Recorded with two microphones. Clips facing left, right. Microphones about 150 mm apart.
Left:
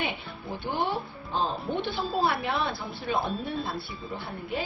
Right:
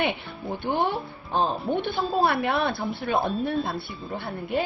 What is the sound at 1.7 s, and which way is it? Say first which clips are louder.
Speech: right 4 dB; 20° right (ahead or behind).